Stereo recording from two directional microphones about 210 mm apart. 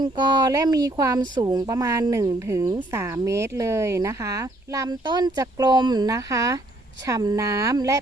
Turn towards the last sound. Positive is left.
turn(degrees=-15)  # may be behind; listen again after turning